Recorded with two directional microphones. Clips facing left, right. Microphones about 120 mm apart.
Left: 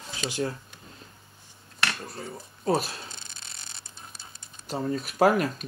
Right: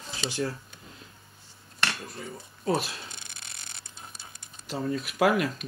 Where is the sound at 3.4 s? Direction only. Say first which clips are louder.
Even; 25° left (ahead or behind).